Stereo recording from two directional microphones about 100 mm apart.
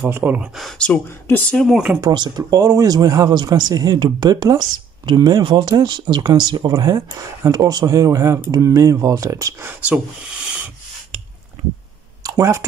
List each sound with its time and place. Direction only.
0.0 s speech: 20° right (ahead or behind)
0.6 s speech: 5° left (ahead or behind)
2.0 s speech: 45° right (ahead or behind)
6.7 s speech: 35° right (ahead or behind)
9.7 s speech: 15° right (ahead or behind)
12.2 s a sound: 30° right (ahead or behind)